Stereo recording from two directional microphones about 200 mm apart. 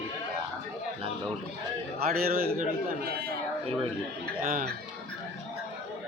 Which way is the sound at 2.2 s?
50° right (ahead or behind).